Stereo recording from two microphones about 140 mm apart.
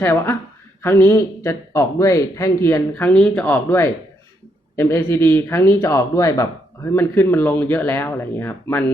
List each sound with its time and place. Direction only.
0.0 s a man's voice: 15° left (ahead or behind)